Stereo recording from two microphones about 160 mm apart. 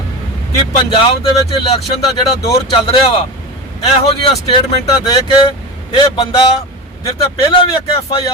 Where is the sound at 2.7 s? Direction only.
35° left (ahead or behind).